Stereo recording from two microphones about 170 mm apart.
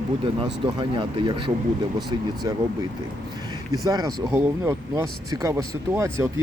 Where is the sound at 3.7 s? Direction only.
20° right (ahead or behind).